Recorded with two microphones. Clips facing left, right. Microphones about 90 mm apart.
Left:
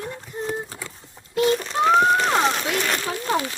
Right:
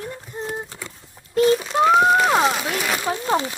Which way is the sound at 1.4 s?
Centre (ahead or behind).